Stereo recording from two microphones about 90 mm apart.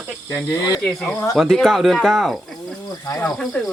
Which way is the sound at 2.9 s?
45° left (ahead or behind).